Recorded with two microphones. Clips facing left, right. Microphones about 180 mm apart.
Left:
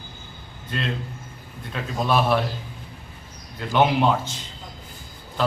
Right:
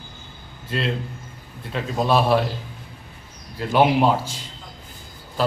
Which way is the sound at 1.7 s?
30° right (ahead or behind).